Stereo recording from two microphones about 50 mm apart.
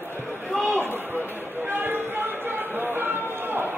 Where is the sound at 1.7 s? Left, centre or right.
Right.